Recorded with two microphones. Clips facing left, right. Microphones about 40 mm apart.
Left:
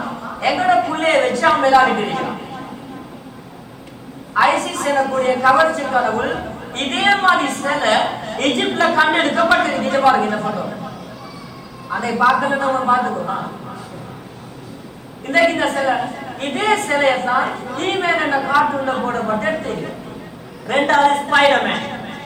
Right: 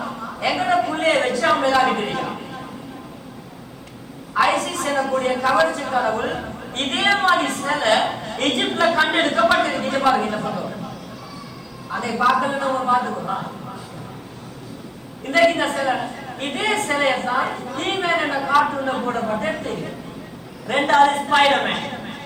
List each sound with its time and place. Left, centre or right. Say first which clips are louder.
0.0 s a sound: left 3 dB; centre
1.2 s a woman's voice: left 4 dB; centre
4.5 s a woman's voice: left 4 dB; centre
11.9 s a woman's voice: left 3 dB; centre
15.3 s a woman's voice: left 2 dB; centre
21.8 s a sound: left 3 dB; centre